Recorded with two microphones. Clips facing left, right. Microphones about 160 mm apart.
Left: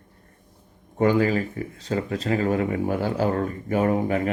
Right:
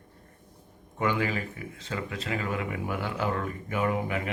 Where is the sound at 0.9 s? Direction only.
35° left (ahead or behind).